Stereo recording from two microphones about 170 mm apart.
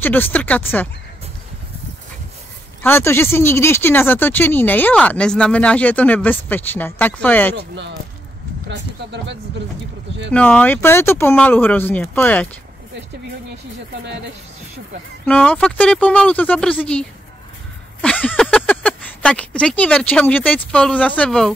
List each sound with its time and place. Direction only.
0.0 s speech: 10° left (ahead or behind)
2.8 s speech: 15° left (ahead or behind)
7.5 s speech: 90° right
10.3 s speech: 10° left (ahead or behind)
15.2 s speech: 5° left (ahead or behind)
18.0 s speech: 10° left (ahead or behind)